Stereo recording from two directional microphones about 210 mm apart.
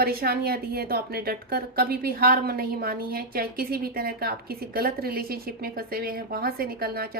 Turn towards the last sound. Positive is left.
turn(degrees=-45)  # may be behind; listen again after turning